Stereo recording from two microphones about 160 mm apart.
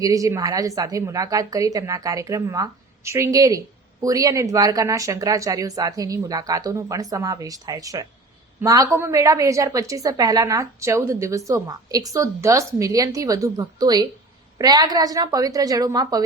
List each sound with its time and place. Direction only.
0.0 s a woman's voice: 20° right (ahead or behind)